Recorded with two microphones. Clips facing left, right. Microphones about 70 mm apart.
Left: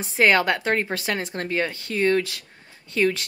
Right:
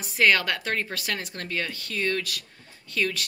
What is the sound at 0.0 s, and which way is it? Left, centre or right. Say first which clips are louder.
Speech: left 3 dB; left.